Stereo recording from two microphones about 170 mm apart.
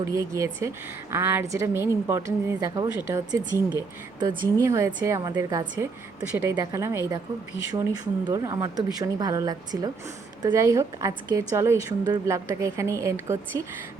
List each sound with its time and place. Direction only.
0.0 s a woman's voice: 20° right (ahead or behind)
8.3 s a woman's voice: 20° right (ahead or behind)